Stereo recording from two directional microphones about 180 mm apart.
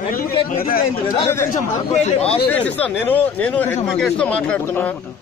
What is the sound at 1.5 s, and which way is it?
Speech, 40° left (ahead or behind).